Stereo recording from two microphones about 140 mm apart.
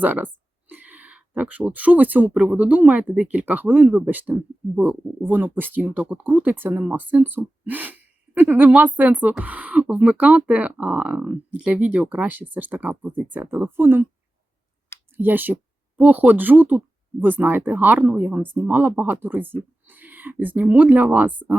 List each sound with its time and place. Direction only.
0.0 s speech: 10° right (ahead or behind)
15.1 s speech: 15° right (ahead or behind)